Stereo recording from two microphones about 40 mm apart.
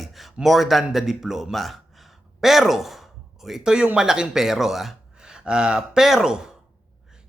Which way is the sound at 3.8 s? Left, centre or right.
Right.